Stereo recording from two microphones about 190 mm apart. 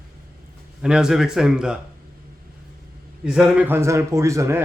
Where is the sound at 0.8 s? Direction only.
5° right (ahead or behind).